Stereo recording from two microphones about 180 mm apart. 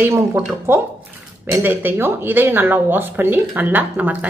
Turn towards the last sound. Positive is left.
turn(degrees=-10)  # may be behind; listen again after turning